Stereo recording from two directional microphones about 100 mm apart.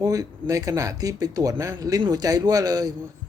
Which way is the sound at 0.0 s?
35° right (ahead or behind).